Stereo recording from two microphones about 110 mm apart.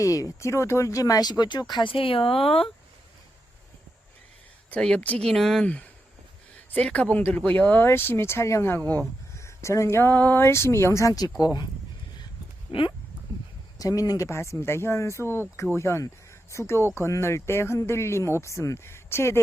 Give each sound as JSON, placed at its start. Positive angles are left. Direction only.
{"t": 0.0, "sound": "speech", "side_deg": 30}
{"t": 4.7, "sound": "speech", "side_deg": 10}
{"t": 13.7, "sound": "speech", "side_deg": 30}